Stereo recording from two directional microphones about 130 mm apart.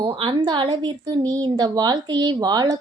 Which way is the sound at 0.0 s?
40° right (ahead or behind).